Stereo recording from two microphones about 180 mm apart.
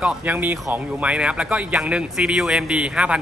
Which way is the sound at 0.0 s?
5° right (ahead or behind).